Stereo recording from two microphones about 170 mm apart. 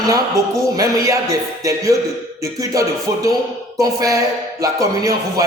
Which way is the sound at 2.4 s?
20° right (ahead or behind).